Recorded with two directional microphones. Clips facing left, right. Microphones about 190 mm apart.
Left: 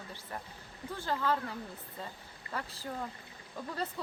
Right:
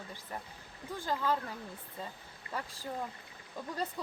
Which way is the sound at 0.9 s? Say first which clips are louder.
Even; 15° right (ahead or behind).